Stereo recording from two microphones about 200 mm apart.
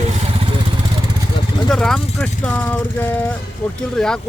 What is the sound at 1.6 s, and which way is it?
Speech, centre (ahead or behind).